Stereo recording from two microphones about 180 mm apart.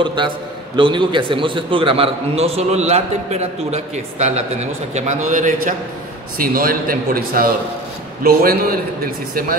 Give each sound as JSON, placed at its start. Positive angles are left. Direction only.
{"t": 0.0, "sound": "a man's voice", "side_deg": -25}